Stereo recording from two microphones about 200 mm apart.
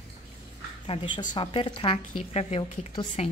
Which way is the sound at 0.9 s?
25° left (ahead or behind).